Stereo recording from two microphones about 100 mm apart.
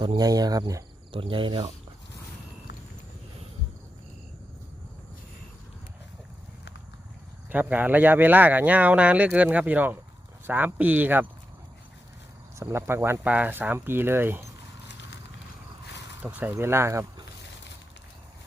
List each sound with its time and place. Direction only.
0.2 s speech: 40° right (ahead or behind)
1.1 s speech: 60° right (ahead or behind)
7.5 s speech: 15° right (ahead or behind)
12.5 s speech: 30° right (ahead or behind)
16.2 s speech: 15° right (ahead or behind)
16.6 s speech: 25° right (ahead or behind)